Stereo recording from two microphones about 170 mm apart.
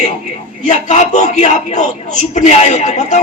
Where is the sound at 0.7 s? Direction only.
45° left (ahead or behind).